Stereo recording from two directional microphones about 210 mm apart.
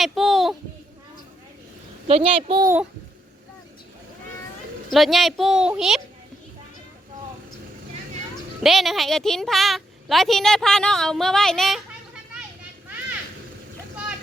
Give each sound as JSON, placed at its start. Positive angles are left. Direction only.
{"t": 0.0, "sound": "a sound", "side_deg": 0}
{"t": 2.0, "sound": "a child's voice", "side_deg": -25}
{"t": 4.9, "sound": "a woman's voice", "side_deg": 0}
{"t": 8.6, "sound": "a woman's voice", "side_deg": 0}